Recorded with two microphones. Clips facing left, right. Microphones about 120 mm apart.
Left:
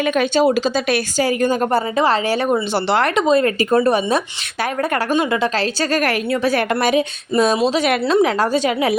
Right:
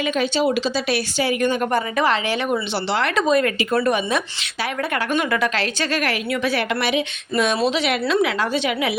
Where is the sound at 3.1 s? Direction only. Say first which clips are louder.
Left 3 dB; 25° left (ahead or behind).